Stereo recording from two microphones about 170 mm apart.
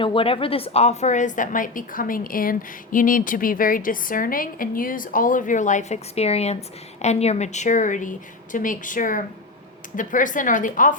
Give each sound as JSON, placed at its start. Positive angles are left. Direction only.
{"t": 0.0, "sound": "a woman's voice", "side_deg": 30}